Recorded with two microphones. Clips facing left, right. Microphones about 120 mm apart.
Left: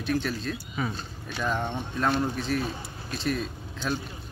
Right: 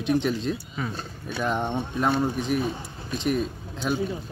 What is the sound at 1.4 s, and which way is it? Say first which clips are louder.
Speech: right 3 dB; 20° right (ahead or behind).